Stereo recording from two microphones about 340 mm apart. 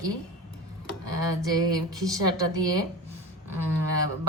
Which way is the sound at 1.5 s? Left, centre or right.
Centre.